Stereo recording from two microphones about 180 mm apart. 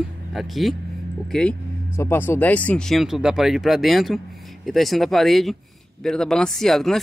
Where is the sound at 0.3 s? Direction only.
Centre (ahead or behind).